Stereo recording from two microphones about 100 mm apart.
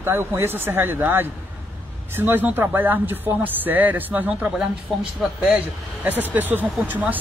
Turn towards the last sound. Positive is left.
turn(degrees=-15)  # may be behind; listen again after turning